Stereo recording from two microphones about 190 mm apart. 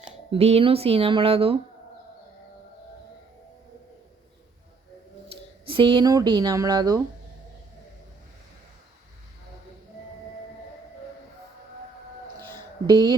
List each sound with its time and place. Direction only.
0.3 s speech: 30° right (ahead or behind)
5.3 s speech: 25° right (ahead or behind)
12.9 s speech: 25° right (ahead or behind)